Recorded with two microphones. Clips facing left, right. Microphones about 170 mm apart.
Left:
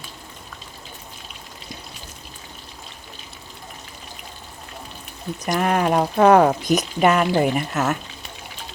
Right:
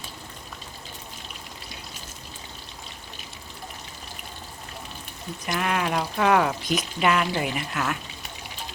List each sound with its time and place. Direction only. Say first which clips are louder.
5.5 s speech: left 6 dB; 40° left (ahead or behind)